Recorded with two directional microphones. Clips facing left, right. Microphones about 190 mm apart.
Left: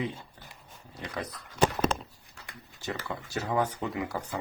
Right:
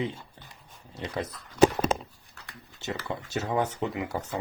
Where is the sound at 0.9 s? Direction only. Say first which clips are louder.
Right 4 dB; 25° right (ahead or behind).